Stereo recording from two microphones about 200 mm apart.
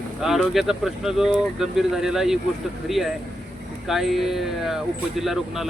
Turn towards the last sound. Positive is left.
turn(degrees=0)  # may be behind; listen again after turning